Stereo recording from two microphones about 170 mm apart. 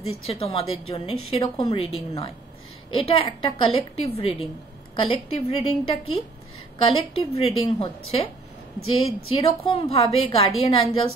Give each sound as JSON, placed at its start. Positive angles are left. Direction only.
{"t": 0.0, "sound": "a woman's voice", "side_deg": 35}
{"t": 7.3, "sound": "a woman's voice", "side_deg": 35}